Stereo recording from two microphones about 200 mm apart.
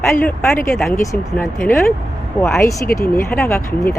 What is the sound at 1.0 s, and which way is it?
Speech, 15° left (ahead or behind).